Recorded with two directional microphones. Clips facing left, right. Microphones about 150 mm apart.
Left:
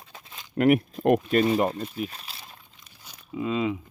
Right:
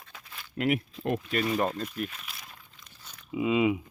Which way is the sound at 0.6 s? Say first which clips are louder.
Left 8 dB; 50° left (ahead or behind).